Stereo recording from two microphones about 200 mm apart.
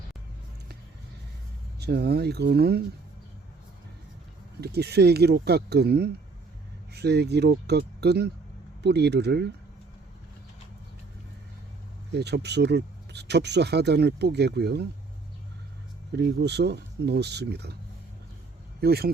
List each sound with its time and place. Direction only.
1.8 s speech: 55° right (ahead or behind)
4.6 s speech: 55° right (ahead or behind)
12.1 s speech: 55° right (ahead or behind)
16.1 s speech: 55° right (ahead or behind)
18.8 s speech: 50° right (ahead or behind)